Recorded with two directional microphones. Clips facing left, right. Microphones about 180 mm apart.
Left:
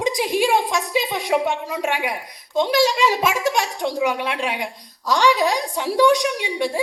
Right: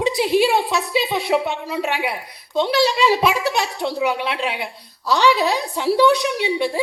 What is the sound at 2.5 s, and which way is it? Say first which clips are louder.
Speech: even; 15° left (ahead or behind).